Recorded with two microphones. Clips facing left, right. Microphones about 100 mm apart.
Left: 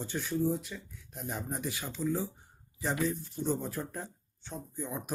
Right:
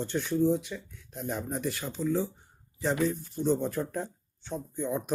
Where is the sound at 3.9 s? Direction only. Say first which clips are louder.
Right 7 dB; centre (ahead or behind).